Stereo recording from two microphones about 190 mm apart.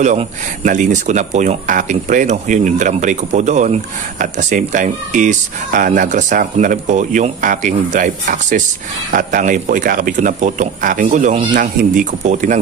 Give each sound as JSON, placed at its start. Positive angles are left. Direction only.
{"t": 0.0, "sound": "speech", "side_deg": -40}